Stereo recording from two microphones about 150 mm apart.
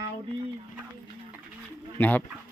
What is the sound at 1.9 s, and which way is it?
Speech, 10° left (ahead or behind).